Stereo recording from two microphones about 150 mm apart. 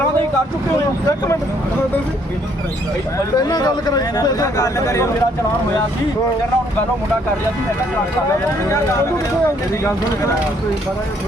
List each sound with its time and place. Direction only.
3.3 s speech: 25° left (ahead or behind)
8.3 s speech: 20° left (ahead or behind)